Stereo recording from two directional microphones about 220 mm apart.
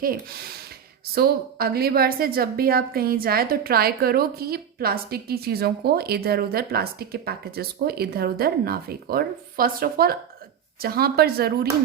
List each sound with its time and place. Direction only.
0.0 s a woman's voice: 40° right (ahead or behind)